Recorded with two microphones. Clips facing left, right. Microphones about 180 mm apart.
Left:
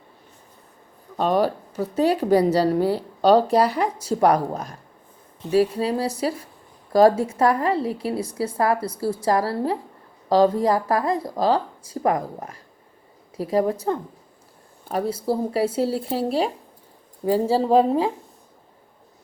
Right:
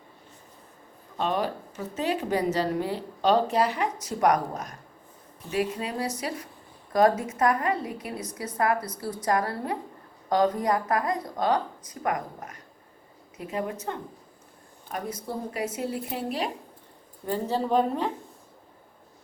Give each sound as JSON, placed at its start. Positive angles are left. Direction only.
{"t": 1.1, "sound": "speech", "side_deg": 40}
{"t": 17.6, "sound": "speech", "side_deg": 35}